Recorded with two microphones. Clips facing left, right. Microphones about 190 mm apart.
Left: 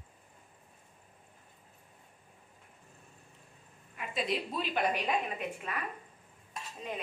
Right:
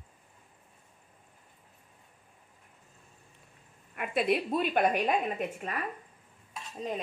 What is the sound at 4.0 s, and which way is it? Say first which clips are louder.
A woman's voice: right 6 dB; 60° right (ahead or behind).